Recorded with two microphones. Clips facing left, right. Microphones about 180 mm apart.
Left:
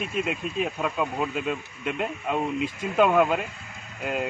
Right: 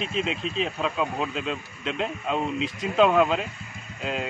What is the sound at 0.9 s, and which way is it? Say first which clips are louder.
Speech: even; centre (ahead or behind).